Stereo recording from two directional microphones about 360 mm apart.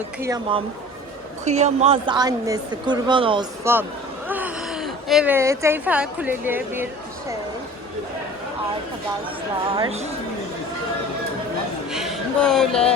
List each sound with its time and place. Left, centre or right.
0.2 s a woman's voice: centre
9.7 s a woman's voice: centre
11.9 s a sound: centre